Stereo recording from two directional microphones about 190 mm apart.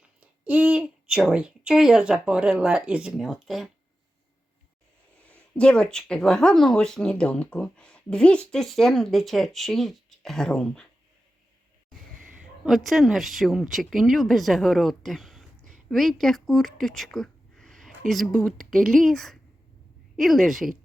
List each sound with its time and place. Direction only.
0.4 s speech: 5° right (ahead or behind)
5.3 s speech: 5° left (ahead or behind)
12.6 s speech: centre (ahead or behind)
16.8 s a sound: centre (ahead or behind)
18.1 s speech: centre (ahead or behind)